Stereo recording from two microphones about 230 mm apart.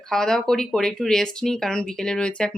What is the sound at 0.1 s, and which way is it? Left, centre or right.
Speech, centre.